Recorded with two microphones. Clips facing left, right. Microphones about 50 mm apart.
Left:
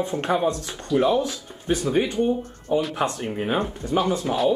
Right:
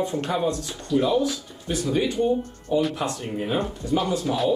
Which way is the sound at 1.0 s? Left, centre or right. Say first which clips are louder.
Left 1 dB; left.